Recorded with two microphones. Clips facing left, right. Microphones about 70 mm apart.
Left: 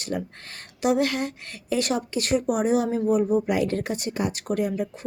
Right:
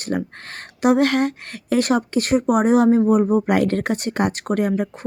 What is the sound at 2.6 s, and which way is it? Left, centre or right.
A woman's voice, right.